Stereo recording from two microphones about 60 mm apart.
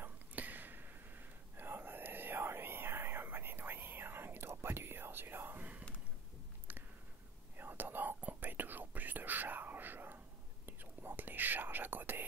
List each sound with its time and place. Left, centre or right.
0.0 s whispering: right
6.7 s a sound: right
7.5 s whispering: right